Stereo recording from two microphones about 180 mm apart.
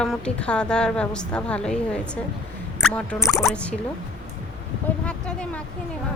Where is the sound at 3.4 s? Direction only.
5° left (ahead or behind).